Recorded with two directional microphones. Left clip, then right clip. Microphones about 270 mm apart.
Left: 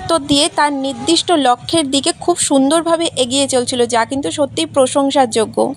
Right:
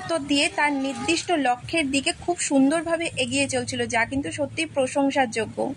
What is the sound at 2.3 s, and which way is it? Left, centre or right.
A woman's voice, left.